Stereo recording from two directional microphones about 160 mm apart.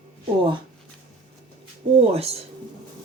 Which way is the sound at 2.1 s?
40° right (ahead or behind).